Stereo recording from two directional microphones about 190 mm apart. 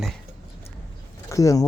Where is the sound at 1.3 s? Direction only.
15° left (ahead or behind).